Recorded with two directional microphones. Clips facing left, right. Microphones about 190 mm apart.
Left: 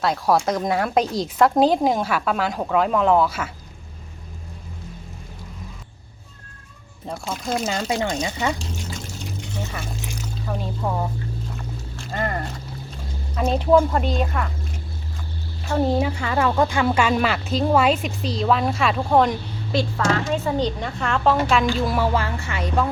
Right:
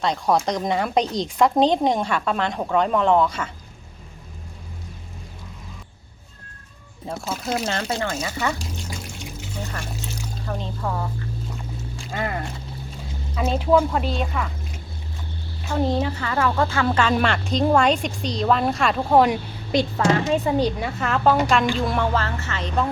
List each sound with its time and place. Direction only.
0.0 s speech: 5° left (ahead or behind)
7.1 s speech: 5° right (ahead or behind)
7.9 s a woman's voice: 15° left (ahead or behind)
9.4 s pour: centre (ahead or behind)
10.8 s a woman's voice: 15° left (ahead or behind)
12.1 s speech: 5° right (ahead or behind)
15.7 s a woman's voice: 10° left (ahead or behind)